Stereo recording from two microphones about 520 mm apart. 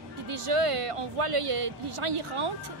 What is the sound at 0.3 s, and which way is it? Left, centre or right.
A woman's voice, right.